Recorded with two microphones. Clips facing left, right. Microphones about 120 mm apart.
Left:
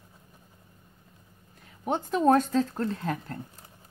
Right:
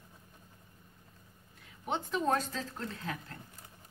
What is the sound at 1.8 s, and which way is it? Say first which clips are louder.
Speech: left 9 dB; 45° left (ahead or behind).